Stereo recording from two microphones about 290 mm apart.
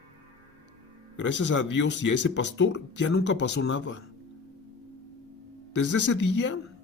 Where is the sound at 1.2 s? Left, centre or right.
Left.